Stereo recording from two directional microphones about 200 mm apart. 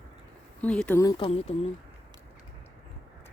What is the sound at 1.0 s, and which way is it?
Speech, 20° left (ahead or behind).